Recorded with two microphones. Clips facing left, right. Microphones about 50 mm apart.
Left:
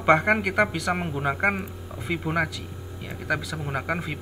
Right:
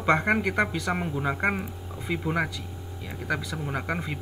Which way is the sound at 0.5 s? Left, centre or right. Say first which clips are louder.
Left 3 dB; centre.